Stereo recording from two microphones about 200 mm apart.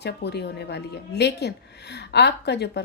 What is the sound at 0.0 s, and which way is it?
A woman's voice, 55° left (ahead or behind).